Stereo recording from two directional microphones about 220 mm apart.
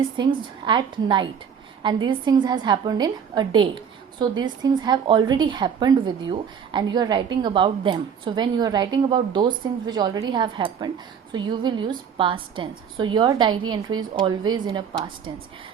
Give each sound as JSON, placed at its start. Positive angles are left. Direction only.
{"t": 0.2, "sound": "a woman's voice", "side_deg": -20}